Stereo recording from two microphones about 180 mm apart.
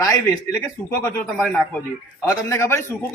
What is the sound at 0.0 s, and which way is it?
A man's voice, 15° left (ahead or behind).